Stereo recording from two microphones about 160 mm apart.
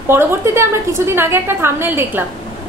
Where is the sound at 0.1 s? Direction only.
15° right (ahead or behind).